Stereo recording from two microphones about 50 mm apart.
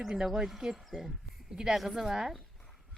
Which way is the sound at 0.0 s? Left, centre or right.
Centre.